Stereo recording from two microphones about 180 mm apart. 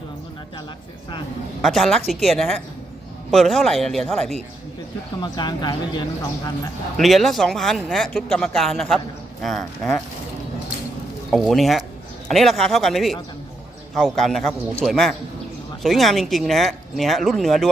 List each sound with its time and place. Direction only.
1.6 s speech: centre (ahead or behind)
5.2 s speech: 25° left (ahead or behind)
6.9 s speech: centre (ahead or behind)
11.3 s speech: centre (ahead or behind)